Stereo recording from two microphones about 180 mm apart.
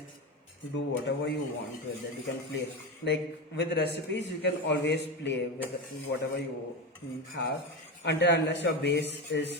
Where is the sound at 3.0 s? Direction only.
70° left (ahead or behind).